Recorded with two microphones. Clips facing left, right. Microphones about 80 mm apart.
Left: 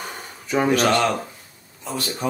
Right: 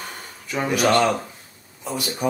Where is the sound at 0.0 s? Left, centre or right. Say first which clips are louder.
Left 2 dB; centre.